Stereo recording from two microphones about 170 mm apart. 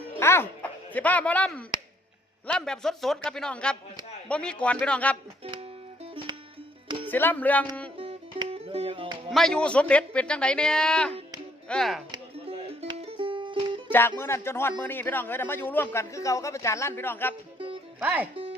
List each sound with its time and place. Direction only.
0.2 s a man's voice: 15° left (ahead or behind)
7.1 s a man's voice: 10° left (ahead or behind)
7.9 s music: 35° right (ahead or behind)
9.3 s a man's voice: 5° left (ahead or behind)
12.1 s music: 35° right (ahead or behind)
14.2 s a man's voice: 15° left (ahead or behind)
18.0 s speech: 10° right (ahead or behind)